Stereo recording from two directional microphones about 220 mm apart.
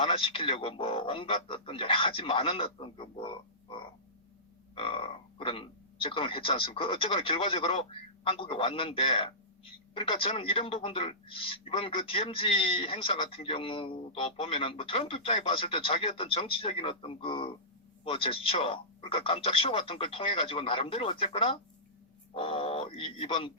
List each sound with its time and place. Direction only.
0.0 s speech: 25° left (ahead or behind)